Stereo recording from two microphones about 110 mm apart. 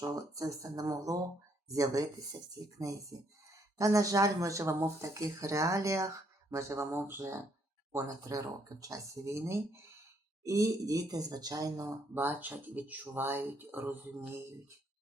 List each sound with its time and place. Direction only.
0.2 s speech: 30° right (ahead or behind)
12.1 s speech: 15° right (ahead or behind)